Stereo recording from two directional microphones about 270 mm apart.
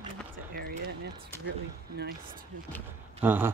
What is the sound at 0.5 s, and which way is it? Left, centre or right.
Basketball bounce, right.